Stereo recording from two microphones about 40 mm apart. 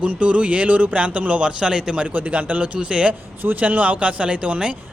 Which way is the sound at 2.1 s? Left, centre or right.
Right.